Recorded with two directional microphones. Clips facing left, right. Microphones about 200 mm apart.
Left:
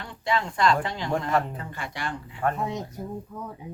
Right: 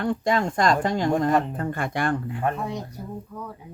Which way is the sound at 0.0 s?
45° right (ahead or behind).